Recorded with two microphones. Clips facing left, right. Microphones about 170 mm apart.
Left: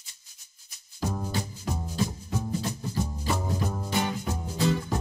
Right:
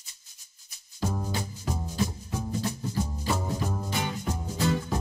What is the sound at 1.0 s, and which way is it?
Music, 5° left (ahead or behind).